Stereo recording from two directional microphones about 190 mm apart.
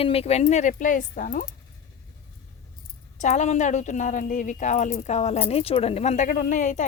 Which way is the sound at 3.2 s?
40° left (ahead or behind).